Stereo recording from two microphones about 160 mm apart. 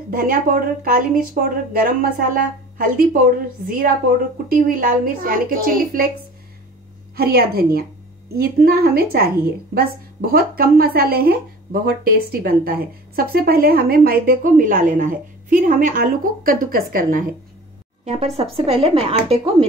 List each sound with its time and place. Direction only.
0.1 s a woman's voice: 65° right (ahead or behind)
7.2 s a woman's voice: 75° right (ahead or behind)
18.0 s speech: 40° right (ahead or behind)